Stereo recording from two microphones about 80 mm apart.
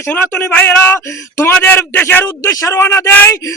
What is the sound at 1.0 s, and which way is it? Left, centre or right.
A man's voice, left.